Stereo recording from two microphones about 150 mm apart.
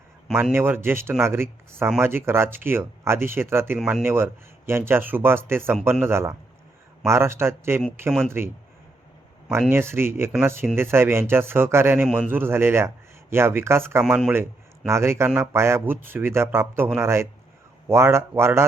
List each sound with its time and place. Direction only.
0.5 s speech: 15° right (ahead or behind)
9.6 s speech: 15° right (ahead or behind)
12.0 s a man's voice: 5° left (ahead or behind)
12.3 s speech: 15° right (ahead or behind)
14.0 s speech: 5° right (ahead or behind)